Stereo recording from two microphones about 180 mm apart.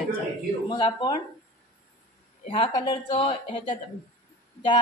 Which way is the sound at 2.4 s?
25° left (ahead or behind).